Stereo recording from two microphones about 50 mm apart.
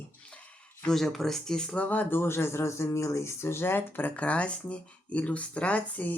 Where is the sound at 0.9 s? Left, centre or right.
Centre.